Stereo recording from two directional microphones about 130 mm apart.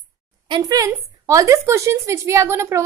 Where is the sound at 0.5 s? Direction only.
30° right (ahead or behind).